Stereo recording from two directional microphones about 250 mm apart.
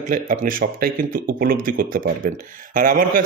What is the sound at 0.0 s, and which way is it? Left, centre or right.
Speech, right.